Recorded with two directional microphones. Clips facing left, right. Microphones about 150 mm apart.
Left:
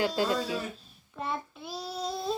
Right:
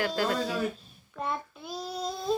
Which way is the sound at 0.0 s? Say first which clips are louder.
Left 1 dB; 20° left (ahead or behind).